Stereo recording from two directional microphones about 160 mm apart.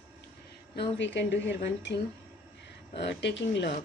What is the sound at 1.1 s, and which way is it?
Speech, 90° left.